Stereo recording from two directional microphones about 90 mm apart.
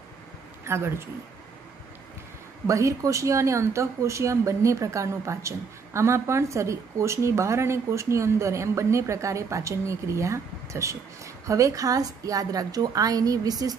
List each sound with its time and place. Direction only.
0.7 s a man's voice: 30° right (ahead or behind)
2.6 s a woman's voice: 35° right (ahead or behind)